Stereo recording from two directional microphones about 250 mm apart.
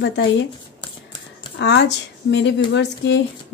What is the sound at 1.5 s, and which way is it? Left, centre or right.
A woman's voice, left.